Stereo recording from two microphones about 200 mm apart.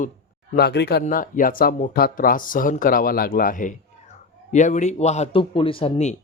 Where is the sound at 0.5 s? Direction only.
55° left (ahead or behind).